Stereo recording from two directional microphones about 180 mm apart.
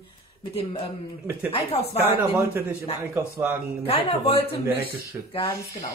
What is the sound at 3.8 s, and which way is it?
Speech, 35° left (ahead or behind).